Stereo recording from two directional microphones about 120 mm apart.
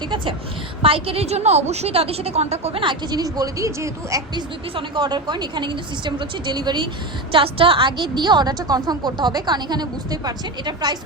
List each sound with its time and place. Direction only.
0.8 s a woman's voice: 50° right (ahead or behind)
2.8 s a woman's voice: 40° right (ahead or behind)
4.7 s a woman's voice: 45° right (ahead or behind)
7.3 s a woman's voice: 50° right (ahead or behind)